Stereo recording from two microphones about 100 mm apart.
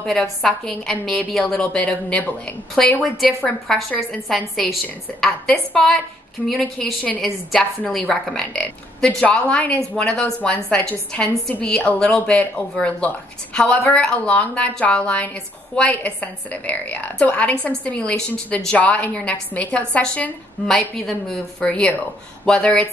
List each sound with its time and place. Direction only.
0.0 s a woman's voice: 5° left (ahead or behind)